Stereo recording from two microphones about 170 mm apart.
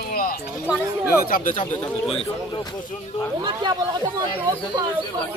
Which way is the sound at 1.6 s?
10° left (ahead or behind).